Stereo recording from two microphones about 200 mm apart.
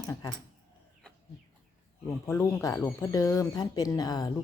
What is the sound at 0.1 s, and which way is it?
Speech, 15° left (ahead or behind).